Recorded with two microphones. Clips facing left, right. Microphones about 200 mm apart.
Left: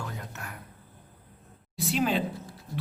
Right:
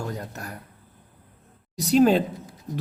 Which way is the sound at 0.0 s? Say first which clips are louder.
Right 6 dB; 40° right (ahead or behind).